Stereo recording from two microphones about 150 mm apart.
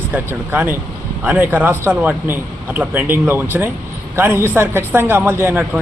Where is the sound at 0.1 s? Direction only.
10° right (ahead or behind).